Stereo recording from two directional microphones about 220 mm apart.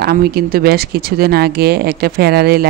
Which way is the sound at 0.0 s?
45° right (ahead or behind).